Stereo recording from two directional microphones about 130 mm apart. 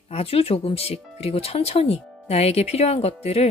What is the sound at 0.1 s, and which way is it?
Speech, 50° left (ahead or behind).